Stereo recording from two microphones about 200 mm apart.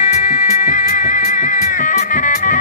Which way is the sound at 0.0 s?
40° left (ahead or behind).